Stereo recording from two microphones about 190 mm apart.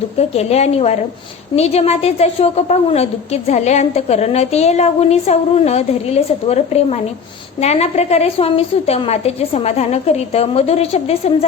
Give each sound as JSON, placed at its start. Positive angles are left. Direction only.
{"t": 0.2, "sound": "a woman's voice", "side_deg": 35}